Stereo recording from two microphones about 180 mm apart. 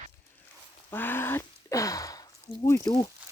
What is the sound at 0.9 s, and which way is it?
Speech, 10° left (ahead or behind).